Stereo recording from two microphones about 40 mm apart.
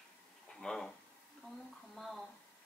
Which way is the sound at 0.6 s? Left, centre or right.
Centre.